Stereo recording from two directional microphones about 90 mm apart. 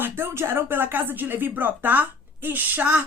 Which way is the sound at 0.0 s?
25° right (ahead or behind).